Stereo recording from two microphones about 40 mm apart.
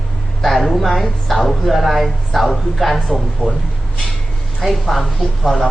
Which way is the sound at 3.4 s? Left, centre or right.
Left.